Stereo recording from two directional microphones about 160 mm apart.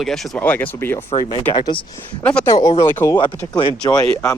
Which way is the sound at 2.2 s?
10° left (ahead or behind).